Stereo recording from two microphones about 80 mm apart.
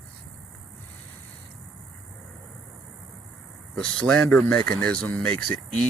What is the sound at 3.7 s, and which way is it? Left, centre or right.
Speech, centre.